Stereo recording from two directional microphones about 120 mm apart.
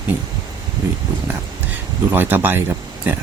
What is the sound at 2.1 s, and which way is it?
Speech, 15° right (ahead or behind).